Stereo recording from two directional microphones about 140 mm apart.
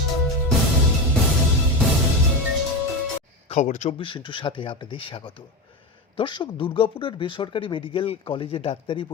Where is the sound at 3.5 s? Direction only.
55° left (ahead or behind).